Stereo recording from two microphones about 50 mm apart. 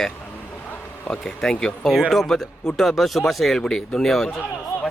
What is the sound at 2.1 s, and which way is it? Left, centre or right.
Speech, centre.